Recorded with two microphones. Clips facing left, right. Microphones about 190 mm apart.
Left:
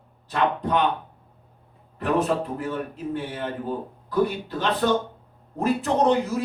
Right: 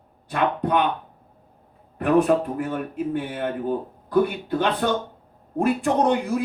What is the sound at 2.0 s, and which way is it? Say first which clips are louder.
A man's voice: right 5 dB; 55° right (ahead or behind).